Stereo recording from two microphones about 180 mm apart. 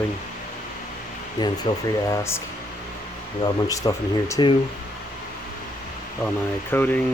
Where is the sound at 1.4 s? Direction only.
20° left (ahead or behind).